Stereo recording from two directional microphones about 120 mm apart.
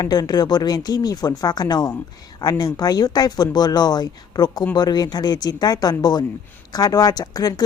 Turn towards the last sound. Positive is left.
turn(degrees=30)  # may be behind; listen again after turning